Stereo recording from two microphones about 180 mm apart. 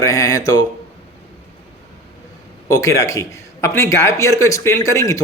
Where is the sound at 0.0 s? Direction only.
20° left (ahead or behind).